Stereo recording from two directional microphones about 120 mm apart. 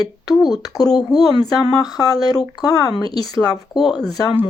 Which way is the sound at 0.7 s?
30° left (ahead or behind).